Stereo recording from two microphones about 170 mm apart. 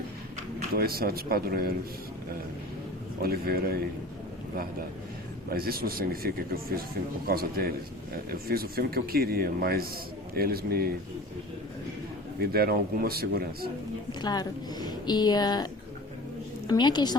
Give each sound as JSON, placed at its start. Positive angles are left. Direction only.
{"t": 0.8, "sound": "speech", "side_deg": -65}
{"t": 3.2, "sound": "speech", "side_deg": -65}
{"t": 5.5, "sound": "speech", "side_deg": -60}
{"t": 12.4, "sound": "speech", "side_deg": -65}
{"t": 14.1, "sound": "a woman's voice", "side_deg": 25}